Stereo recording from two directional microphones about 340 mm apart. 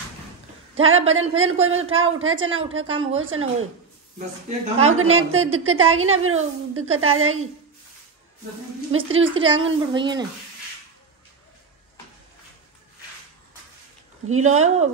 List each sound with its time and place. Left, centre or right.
0.7 s a woman's voice: right
4.7 s a woman's voice: right
8.9 s a woman's voice: right
9.9 s speech: centre
14.4 s speech: centre